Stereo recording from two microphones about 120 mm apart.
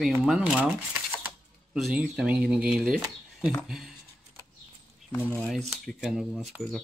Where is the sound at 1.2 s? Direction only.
5° right (ahead or behind).